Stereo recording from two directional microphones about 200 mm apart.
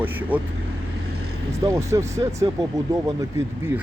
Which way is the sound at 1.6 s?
15° right (ahead or behind).